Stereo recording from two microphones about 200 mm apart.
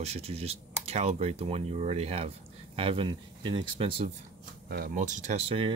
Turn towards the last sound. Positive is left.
turn(degrees=-30)  # may be behind; listen again after turning